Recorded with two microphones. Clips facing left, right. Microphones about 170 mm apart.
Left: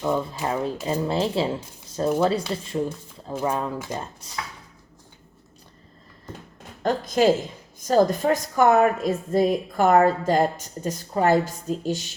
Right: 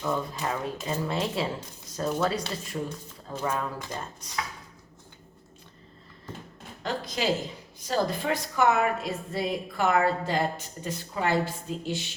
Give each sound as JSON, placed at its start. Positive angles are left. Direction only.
{"t": 0.0, "sound": "speech", "side_deg": 25}
{"t": 6.8, "sound": "a woman's voice", "side_deg": 45}